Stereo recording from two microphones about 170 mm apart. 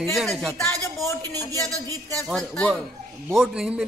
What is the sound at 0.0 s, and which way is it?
Speech, centre (ahead or behind).